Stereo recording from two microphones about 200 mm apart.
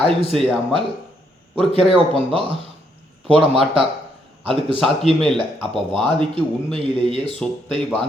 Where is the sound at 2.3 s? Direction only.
25° right (ahead or behind).